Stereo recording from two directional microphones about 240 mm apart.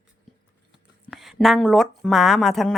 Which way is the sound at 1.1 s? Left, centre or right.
Centre.